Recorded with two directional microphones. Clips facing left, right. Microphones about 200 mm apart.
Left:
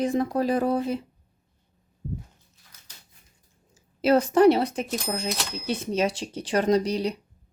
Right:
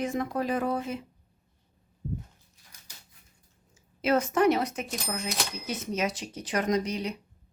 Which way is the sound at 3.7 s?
35° left (ahead or behind).